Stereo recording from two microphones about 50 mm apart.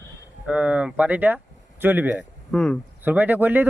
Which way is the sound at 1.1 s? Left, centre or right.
Right.